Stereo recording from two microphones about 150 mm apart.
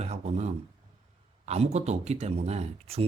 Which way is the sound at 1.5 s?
45° right (ahead or behind).